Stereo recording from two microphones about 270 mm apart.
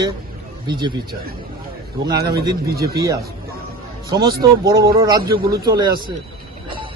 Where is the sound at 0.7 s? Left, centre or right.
Centre.